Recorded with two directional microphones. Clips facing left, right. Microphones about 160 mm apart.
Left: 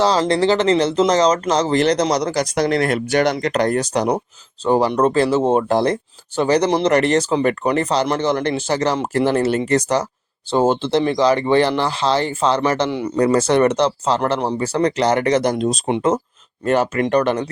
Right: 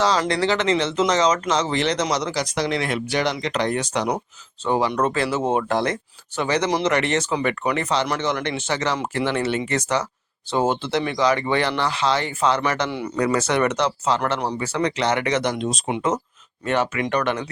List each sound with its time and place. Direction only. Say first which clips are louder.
0.0 s speech: left 4 dB; 30° left (ahead or behind)